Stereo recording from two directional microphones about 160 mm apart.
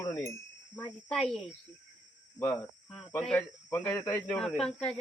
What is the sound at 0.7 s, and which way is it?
Speech, 5° left (ahead or behind).